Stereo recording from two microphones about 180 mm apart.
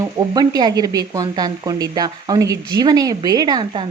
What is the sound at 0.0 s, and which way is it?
Speech, 20° right (ahead or behind).